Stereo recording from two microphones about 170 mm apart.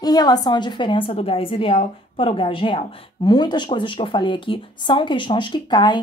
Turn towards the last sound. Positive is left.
turn(degrees=25)  # may be behind; listen again after turning